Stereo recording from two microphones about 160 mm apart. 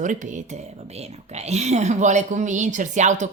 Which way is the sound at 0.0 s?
50° right (ahead or behind).